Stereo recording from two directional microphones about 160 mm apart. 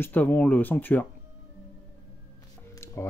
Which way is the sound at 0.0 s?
10° left (ahead or behind).